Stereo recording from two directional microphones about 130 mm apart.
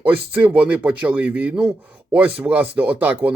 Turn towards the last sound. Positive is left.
turn(degrees=-10)  # may be behind; listen again after turning